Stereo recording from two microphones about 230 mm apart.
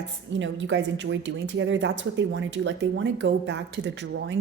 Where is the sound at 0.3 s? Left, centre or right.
Right.